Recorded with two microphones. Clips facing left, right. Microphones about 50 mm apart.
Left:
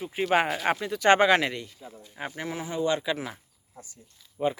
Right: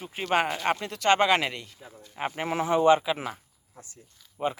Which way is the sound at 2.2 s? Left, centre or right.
Right.